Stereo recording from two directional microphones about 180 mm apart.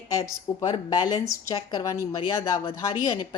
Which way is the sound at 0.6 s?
25° left (ahead or behind).